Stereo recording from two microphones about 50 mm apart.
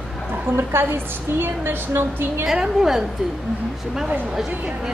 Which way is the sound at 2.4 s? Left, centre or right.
Centre.